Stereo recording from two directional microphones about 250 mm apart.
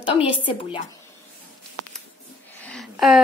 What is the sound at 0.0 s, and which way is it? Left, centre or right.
Speech, left.